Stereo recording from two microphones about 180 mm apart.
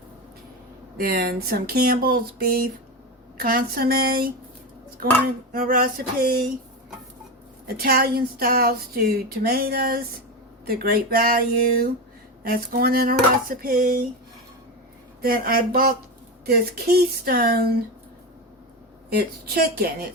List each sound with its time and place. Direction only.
0.9 s speech: 55° right (ahead or behind)
5.5 s a sound: 55° right (ahead or behind)
7.8 s speech: 60° right (ahead or behind)
13.5 s a sound: 55° right (ahead or behind)
15.2 s speech: 55° right (ahead or behind)
19.1 s speech: 55° right (ahead or behind)